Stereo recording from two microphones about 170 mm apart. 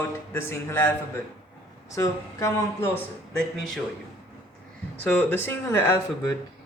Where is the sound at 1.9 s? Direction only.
20° left (ahead or behind).